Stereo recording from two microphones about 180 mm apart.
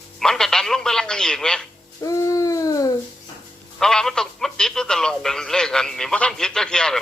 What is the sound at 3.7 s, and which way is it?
Speech, centre (ahead or behind).